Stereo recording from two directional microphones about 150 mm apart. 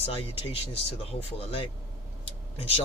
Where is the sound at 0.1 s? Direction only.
40° left (ahead or behind).